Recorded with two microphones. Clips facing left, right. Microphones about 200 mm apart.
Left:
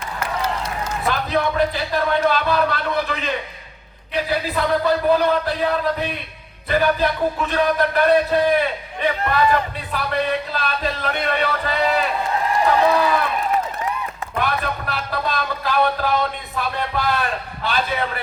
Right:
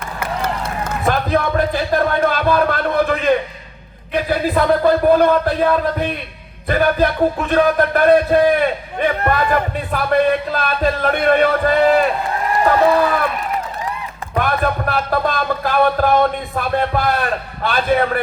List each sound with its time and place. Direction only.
0.2 s a man's voice: 55° right (ahead or behind)
14.3 s music: 50° right (ahead or behind)